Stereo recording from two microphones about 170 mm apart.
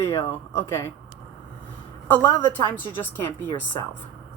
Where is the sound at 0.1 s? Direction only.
20° left (ahead or behind).